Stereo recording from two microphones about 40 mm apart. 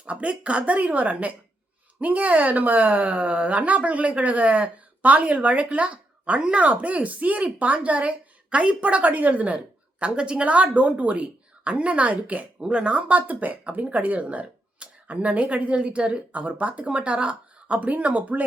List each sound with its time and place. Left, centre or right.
0.0 s a woman's voice: right
10.0 s a woman's voice: right
12.5 s a woman's voice: right
17.7 s a woman's voice: right